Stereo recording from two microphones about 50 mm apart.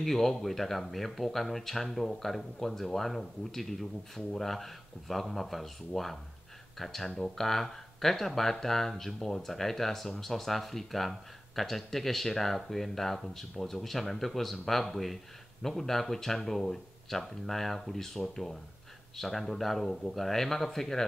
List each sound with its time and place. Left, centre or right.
0.0 s speech: centre